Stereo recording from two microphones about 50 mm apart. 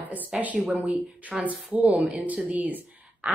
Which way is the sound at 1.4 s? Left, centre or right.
Right.